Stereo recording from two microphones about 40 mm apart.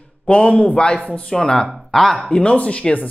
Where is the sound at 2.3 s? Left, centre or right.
Left.